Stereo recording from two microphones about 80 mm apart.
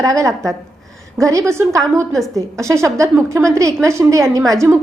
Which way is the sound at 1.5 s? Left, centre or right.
Right.